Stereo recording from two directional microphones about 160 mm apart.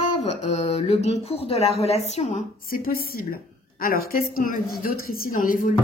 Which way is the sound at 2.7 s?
65° left (ahead or behind).